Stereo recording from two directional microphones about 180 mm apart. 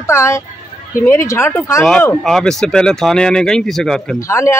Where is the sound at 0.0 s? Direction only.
15° left (ahead or behind).